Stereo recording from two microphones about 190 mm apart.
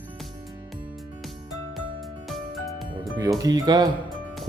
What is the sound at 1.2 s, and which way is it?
Music, centre (ahead or behind).